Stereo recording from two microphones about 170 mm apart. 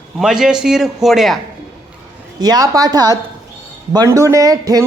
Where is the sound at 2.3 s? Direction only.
25° right (ahead or behind).